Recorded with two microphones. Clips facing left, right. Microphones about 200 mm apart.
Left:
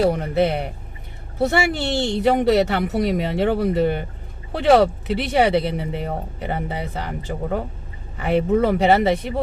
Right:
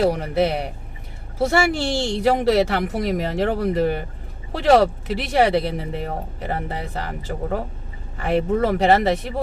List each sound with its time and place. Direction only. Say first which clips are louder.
0.1 s speech: left 1 dB; 5° right (ahead or behind)
8.2 s speech: left 2 dB; centre (ahead or behind)